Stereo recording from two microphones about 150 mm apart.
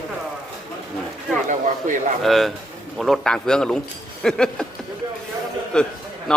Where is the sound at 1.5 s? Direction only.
55° right (ahead or behind).